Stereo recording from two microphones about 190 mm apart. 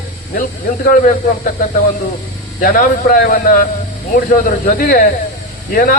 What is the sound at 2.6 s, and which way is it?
Speech, 45° left (ahead or behind).